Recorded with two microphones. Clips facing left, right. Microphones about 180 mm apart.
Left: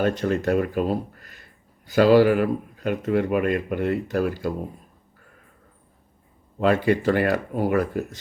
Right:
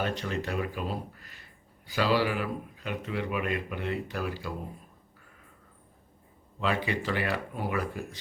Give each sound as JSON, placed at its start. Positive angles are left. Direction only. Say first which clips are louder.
{"t": 0.0, "sound": "speech", "louder": "left 9 dB", "side_deg": 50}
{"t": 6.6, "sound": "speech", "louder": "left 10 dB", "side_deg": 45}